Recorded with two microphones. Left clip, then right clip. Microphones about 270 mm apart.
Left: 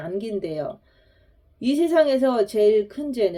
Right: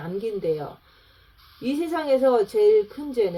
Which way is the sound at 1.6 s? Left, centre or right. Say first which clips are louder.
Left 7 dB; left.